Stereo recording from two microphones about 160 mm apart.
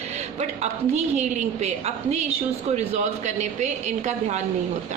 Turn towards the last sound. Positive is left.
turn(degrees=-45)  # may be behind; listen again after turning